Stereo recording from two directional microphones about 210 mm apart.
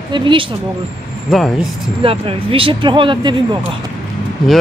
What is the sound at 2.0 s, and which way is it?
Speech, 25° right (ahead or behind).